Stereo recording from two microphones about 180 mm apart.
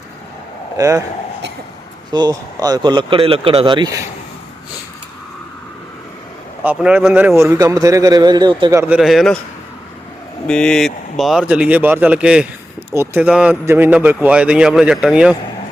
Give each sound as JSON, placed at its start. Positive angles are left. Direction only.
{"t": 0.8, "sound": "a man's voice", "side_deg": -15}
{"t": 2.1, "sound": "speech", "side_deg": -20}
{"t": 6.6, "sound": "a man's voice", "side_deg": -10}
{"t": 8.8, "sound": "speech", "side_deg": -5}
{"t": 10.4, "sound": "a man's voice", "side_deg": 5}